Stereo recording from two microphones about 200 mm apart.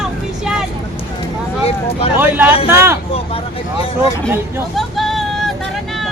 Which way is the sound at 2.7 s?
10° right (ahead or behind).